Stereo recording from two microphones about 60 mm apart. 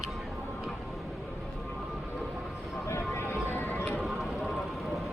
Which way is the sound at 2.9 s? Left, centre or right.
Left.